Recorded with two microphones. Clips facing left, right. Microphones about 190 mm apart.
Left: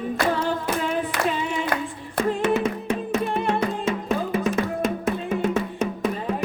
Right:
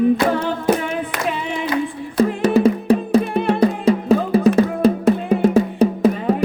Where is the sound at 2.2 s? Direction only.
35° right (ahead or behind).